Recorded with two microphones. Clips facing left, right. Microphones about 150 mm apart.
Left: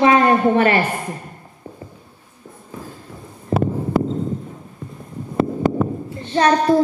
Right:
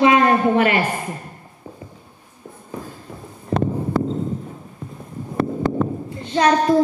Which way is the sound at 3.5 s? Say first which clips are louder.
Left 1 dB; 5° left (ahead or behind).